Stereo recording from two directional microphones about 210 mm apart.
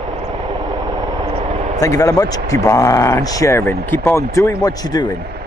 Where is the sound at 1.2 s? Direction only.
30° right (ahead or behind).